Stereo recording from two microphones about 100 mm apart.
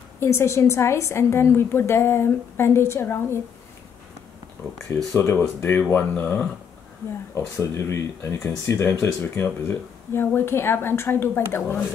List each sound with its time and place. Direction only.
0.2 s speech: 30° left (ahead or behind)
5.1 s speech: 20° left (ahead or behind)
7.3 s speech: 25° left (ahead or behind)